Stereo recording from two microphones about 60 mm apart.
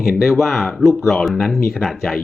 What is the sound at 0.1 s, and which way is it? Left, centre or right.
Speech, centre.